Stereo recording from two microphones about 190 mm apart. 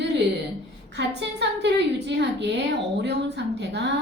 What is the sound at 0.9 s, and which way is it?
A woman's voice, 65° right (ahead or behind).